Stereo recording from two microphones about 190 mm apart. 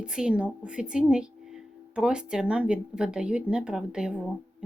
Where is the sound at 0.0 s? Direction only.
5° right (ahead or behind).